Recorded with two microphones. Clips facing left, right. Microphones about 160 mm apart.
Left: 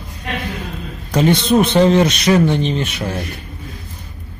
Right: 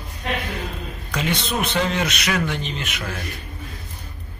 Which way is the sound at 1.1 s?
35° left (ahead or behind).